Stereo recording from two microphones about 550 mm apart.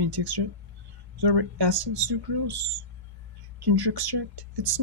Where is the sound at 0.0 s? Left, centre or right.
Right.